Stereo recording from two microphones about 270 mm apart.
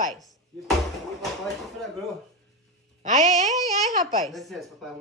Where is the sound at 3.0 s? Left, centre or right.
Right.